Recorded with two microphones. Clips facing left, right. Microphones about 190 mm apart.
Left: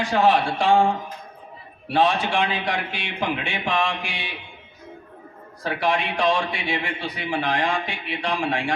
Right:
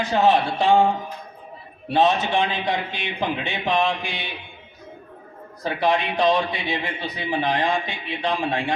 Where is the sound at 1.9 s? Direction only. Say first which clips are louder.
Right 1 dB; 20° right (ahead or behind).